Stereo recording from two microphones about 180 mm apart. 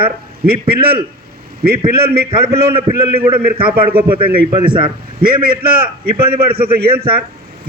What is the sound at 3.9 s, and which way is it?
Speech, 55° right (ahead or behind).